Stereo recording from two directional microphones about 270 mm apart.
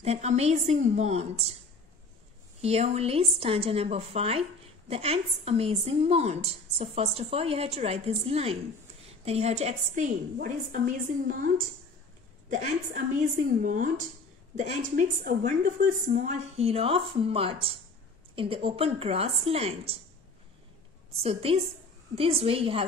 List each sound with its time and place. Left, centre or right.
0.0 s a woman's voice: right
2.6 s a woman's voice: right
21.2 s a woman's voice: right